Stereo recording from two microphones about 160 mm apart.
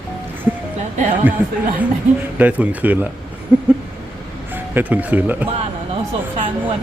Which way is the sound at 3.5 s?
10° right (ahead or behind).